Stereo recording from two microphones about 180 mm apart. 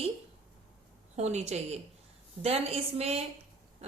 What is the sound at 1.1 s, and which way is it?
A woman's voice, 40° right (ahead or behind).